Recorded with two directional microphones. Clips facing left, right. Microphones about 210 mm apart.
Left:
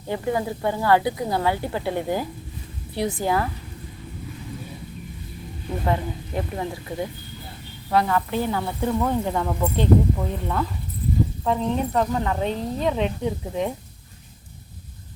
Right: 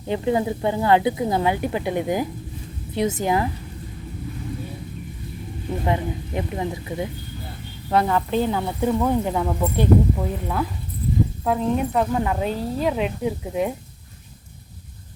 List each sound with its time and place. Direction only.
0.1 s speech: 20° right (ahead or behind)
5.8 s speech: 20° right (ahead or behind)